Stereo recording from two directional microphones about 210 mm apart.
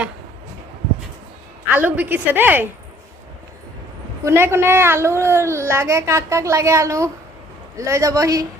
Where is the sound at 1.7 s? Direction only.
10° right (ahead or behind).